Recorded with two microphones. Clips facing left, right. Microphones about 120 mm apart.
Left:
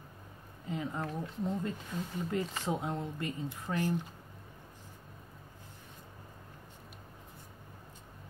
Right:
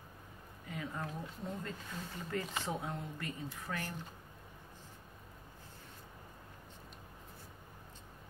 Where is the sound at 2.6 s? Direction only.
20° left (ahead or behind).